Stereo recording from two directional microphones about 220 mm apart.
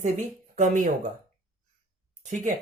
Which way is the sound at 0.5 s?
35° right (ahead or behind).